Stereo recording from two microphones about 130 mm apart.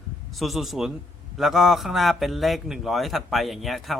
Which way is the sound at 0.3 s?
Centre (ahead or behind).